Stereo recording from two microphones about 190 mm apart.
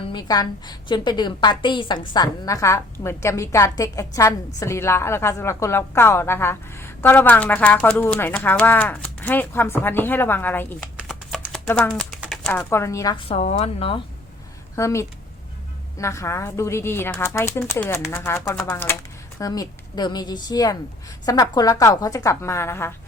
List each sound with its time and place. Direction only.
0.0 s a woman's voice: 20° left (ahead or behind)
10.9 s a sound: centre (ahead or behind)
12.2 s speech: centre (ahead or behind); by 14.0 s 30° left (ahead or behind)
14.8 s a woman's voice: 15° left (ahead or behind)